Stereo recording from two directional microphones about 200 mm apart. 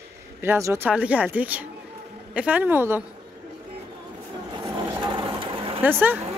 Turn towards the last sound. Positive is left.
turn(degrees=-10)  # may be behind; listen again after turning